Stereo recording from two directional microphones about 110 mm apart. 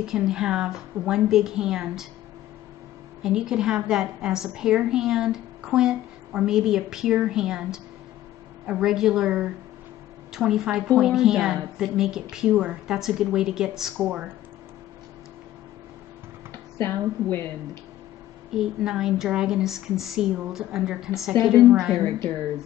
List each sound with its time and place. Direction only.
0.0 s a woman's voice: 5° right (ahead or behind)
3.2 s a woman's voice: 5° right (ahead or behind)
16.7 s speech: 20° left (ahead or behind)
18.5 s a woman's voice: 5° right (ahead or behind)